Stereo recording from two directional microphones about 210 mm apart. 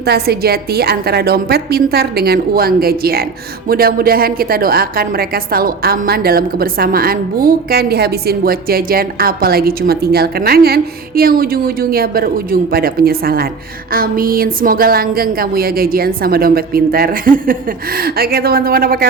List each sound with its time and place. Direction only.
0.0 s a woman's voice: 50° right (ahead or behind)